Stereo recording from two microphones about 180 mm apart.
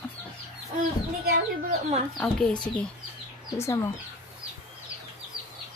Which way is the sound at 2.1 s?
5° left (ahead or behind).